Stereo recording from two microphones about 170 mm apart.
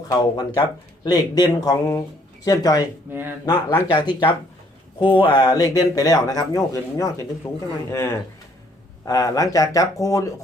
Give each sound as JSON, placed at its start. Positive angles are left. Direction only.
{"t": 0.1, "sound": "speech", "side_deg": 20}
{"t": 3.1, "sound": "speech", "side_deg": -10}
{"t": 3.4, "sound": "speech", "side_deg": 15}
{"t": 3.9, "sound": "speech", "side_deg": 25}